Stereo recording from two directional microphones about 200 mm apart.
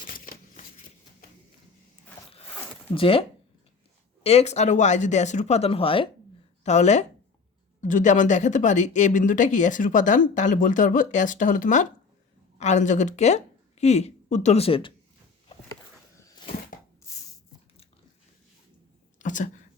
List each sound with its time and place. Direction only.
0.1 s shuffling cards: 45° left (ahead or behind)
2.9 s speech: 25° left (ahead or behind)
19.2 s a sound: 40° left (ahead or behind)